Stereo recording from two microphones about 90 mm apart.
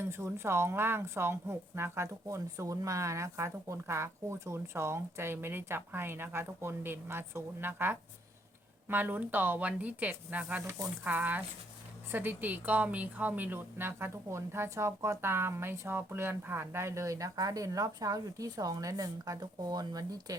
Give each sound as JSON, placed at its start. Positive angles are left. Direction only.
{"t": 0.0, "sound": "a woman's voice", "side_deg": -30}